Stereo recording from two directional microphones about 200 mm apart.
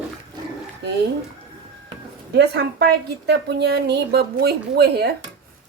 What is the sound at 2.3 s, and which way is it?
A woman's voice, 55° right (ahead or behind).